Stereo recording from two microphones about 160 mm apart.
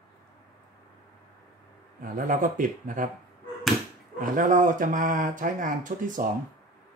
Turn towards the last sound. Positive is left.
turn(degrees=-55)  # may be behind; listen again after turning